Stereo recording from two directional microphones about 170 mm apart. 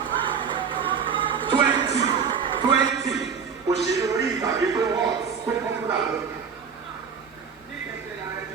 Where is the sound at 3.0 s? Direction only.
Centre (ahead or behind).